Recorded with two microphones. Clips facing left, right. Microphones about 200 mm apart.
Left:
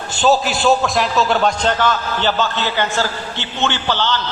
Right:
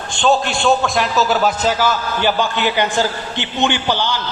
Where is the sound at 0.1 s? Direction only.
5° left (ahead or behind).